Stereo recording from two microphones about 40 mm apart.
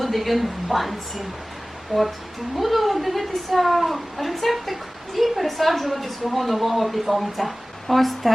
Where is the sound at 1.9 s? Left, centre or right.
Left.